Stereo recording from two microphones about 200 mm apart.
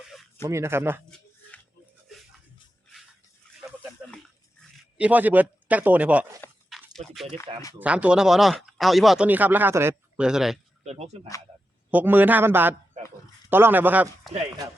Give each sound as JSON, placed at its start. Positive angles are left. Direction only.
{"t": 0.4, "sound": "speech", "side_deg": -15}
{"t": 3.4, "sound": "a sound", "side_deg": 5}
{"t": 4.9, "sound": "speech", "side_deg": -5}
{"t": 6.7, "sound": "a sound", "side_deg": 0}
{"t": 7.3, "sound": "speech", "side_deg": 15}
{"t": 7.8, "sound": "speech", "side_deg": -5}
{"t": 10.8, "sound": "speech", "side_deg": -30}
{"t": 11.9, "sound": "speech", "side_deg": -10}